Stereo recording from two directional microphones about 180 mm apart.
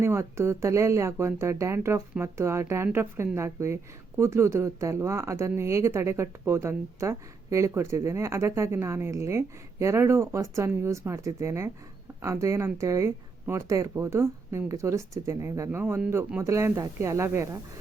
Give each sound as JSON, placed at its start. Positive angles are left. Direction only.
{"t": 0.0, "sound": "speech", "side_deg": -15}